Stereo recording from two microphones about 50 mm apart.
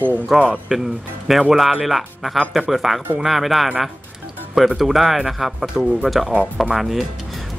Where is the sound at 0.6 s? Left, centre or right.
Centre.